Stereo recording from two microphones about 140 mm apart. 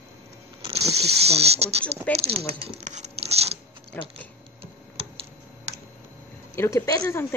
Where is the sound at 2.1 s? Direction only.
10° left (ahead or behind).